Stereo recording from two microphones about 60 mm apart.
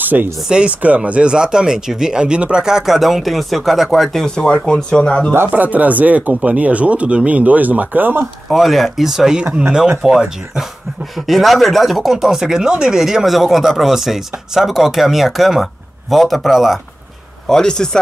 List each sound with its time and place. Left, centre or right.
0.0 s speech: right
0.5 s speech: centre
5.5 s speech: right
8.5 s speech: centre
9.4 s speech: centre
17.5 s speech: centre